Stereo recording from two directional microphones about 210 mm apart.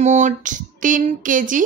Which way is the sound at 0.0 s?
35° right (ahead or behind).